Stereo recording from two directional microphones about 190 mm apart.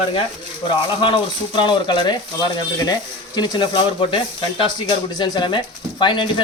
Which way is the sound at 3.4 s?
25° left (ahead or behind).